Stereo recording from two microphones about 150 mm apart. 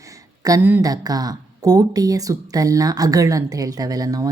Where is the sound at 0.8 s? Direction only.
25° right (ahead or behind).